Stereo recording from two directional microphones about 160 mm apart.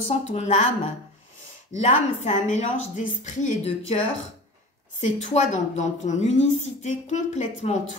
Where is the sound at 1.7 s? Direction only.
45° left (ahead or behind).